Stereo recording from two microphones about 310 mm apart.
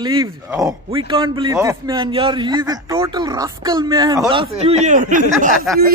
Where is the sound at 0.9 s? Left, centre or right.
Centre.